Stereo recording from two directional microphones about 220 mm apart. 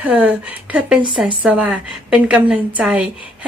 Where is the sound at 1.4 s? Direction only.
5° right (ahead or behind).